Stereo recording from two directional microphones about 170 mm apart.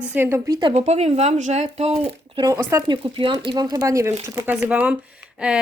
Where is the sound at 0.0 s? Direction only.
10° right (ahead or behind).